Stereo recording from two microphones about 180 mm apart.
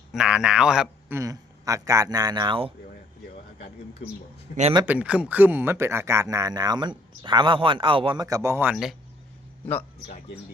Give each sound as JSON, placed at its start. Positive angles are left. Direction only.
{"t": 0.1, "sound": "speech", "side_deg": -5}
{"t": 4.0, "sound": "speech", "side_deg": 35}
{"t": 4.9, "sound": "speech", "side_deg": -10}